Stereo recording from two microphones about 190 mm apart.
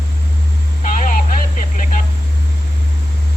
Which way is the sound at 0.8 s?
40° left (ahead or behind).